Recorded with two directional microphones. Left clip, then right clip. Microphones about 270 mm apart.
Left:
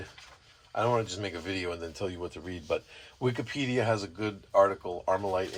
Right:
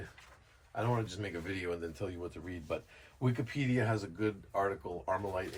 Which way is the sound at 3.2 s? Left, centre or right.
Centre.